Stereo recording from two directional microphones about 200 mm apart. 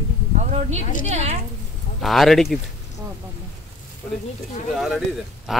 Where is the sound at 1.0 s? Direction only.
35° right (ahead or behind).